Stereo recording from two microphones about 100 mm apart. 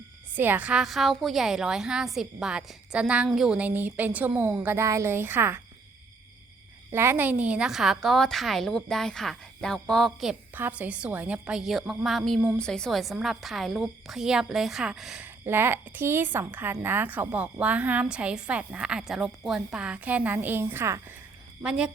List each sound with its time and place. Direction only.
0.3 s a woman's voice: 15° right (ahead or behind)
6.9 s a woman's voice: 25° right (ahead or behind); by 10.3 s centre (ahead or behind)
10.5 s a woman's voice: 15° right (ahead or behind)
15.2 s a woman's voice: 20° right (ahead or behind)
21.6 s a woman's voice: 10° right (ahead or behind)